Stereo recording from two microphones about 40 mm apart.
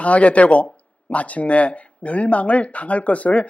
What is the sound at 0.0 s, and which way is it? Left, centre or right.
Speech, left.